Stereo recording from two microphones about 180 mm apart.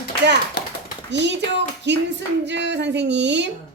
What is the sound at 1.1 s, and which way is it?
A woman's voice, 75° right (ahead or behind).